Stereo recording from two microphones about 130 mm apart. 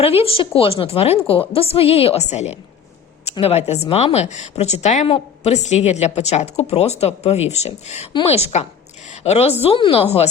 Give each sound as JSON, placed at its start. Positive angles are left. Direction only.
{"t": 0.0, "sound": "a woman's voice", "side_deg": 50}
{"t": 5.0, "sound": "a woman's voice", "side_deg": 50}